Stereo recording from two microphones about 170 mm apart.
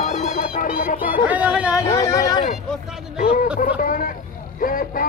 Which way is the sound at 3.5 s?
55° left (ahead or behind).